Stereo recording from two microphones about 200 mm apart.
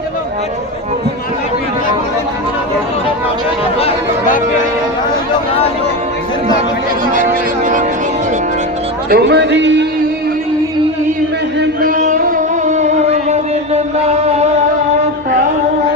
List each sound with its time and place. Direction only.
3.8 s chatter: 30° left (ahead or behind)
7.6 s speech: 40° right (ahead or behind)
9.0 s a man's voice: 55° right (ahead or behind)
11.6 s music: 45° right (ahead or behind)